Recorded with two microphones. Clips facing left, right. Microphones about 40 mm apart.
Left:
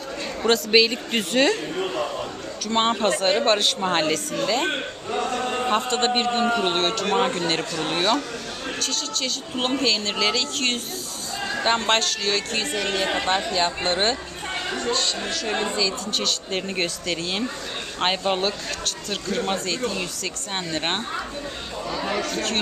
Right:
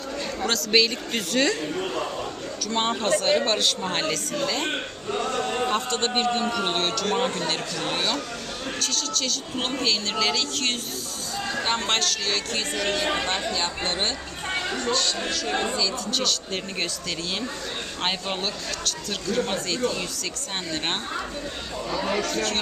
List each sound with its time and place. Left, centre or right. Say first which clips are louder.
0.4 s speech: left 4 dB; centre
1.1 s a man's voice: left 4 dB; left
2.6 s a man's voice: left 3 dB; left
3.6 s a man's voice: left 3 dB; left
4.0 s a man's voice: left 3 dB; centre; by 7.3 s left
7.3 s speech: left 3 dB; centre
14.7 s a sound: left 3 dB; centre
14.9 s speech: even; centre
22.0 s speech: even; centre